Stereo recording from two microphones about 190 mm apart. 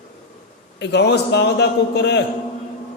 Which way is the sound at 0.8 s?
65° left (ahead or behind).